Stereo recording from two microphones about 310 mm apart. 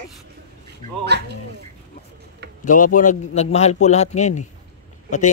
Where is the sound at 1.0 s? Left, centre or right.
Right.